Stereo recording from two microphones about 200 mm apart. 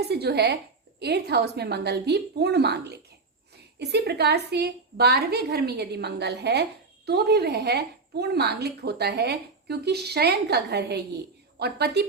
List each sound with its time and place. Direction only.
0.0 s a woman's voice: 55° right (ahead or behind)